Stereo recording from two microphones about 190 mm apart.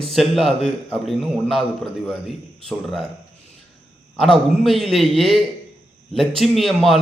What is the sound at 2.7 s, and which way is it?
Speech, centre (ahead or behind).